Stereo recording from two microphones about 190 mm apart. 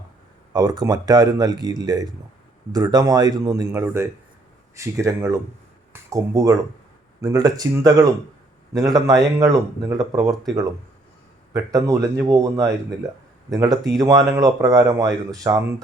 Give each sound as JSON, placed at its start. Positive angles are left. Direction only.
{"t": 0.5, "sound": "speech", "side_deg": -20}